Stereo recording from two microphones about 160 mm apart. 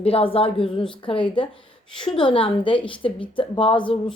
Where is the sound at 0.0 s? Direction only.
35° left (ahead or behind).